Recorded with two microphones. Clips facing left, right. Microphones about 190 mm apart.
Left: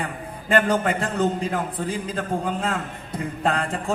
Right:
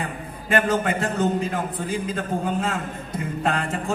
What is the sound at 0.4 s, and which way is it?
A man's voice, 30° left (ahead or behind).